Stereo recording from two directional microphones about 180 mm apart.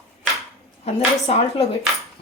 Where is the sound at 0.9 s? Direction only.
35° left (ahead or behind).